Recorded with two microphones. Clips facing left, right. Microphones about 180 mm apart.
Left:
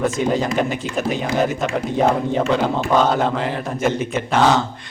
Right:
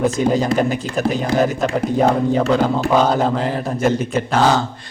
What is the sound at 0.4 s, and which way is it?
Speech, 35° right (ahead or behind).